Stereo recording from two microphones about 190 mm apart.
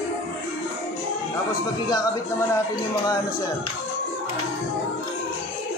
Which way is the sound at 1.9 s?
15° left (ahead or behind).